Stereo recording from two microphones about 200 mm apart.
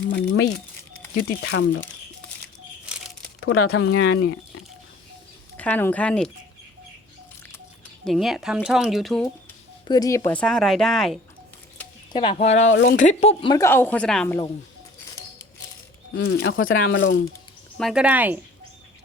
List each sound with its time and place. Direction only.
1.2 s speech: 65° left (ahead or behind)
3.4 s speech: 90° left; by 4.4 s 70° left (ahead or behind)
5.5 s a woman's voice: 10° left (ahead or behind)
8.0 s a woman's voice: centre (ahead or behind)
9.8 s a woman's voice: 20° left (ahead or behind); by 11.2 s centre (ahead or behind)
12.1 s speech: 25° left (ahead or behind)
12.7 s speech: 70° left (ahead or behind)
13.0 s speech: 35° left (ahead or behind)
13.6 s a woman's voice: 10° left (ahead or behind)
16.1 s speech: 65° left (ahead or behind)
17.7 s speech: centre (ahead or behind)